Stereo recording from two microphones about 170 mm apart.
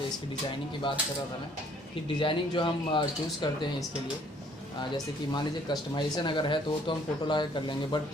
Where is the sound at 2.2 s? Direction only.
30° left (ahead or behind).